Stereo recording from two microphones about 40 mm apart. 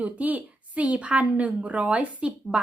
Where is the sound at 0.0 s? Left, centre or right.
Right.